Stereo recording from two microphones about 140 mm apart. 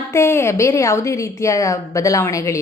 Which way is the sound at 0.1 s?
20° left (ahead or behind).